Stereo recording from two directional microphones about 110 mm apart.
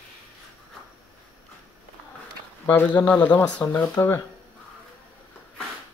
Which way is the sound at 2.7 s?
15° left (ahead or behind).